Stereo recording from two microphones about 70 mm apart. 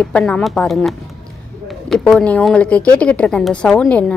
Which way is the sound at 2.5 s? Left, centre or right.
Centre.